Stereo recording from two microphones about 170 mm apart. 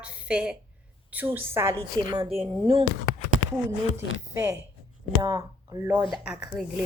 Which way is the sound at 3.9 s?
15° right (ahead or behind).